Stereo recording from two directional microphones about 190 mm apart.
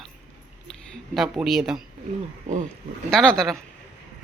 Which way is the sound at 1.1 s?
Centre (ahead or behind).